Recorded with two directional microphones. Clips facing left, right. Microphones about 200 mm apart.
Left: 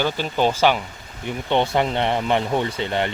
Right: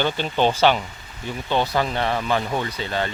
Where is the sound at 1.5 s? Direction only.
25° left (ahead or behind).